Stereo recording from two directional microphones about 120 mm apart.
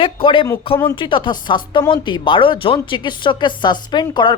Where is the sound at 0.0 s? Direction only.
45° left (ahead or behind).